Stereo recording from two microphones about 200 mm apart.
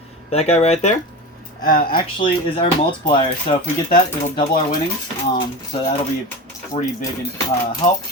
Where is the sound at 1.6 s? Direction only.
45° left (ahead or behind).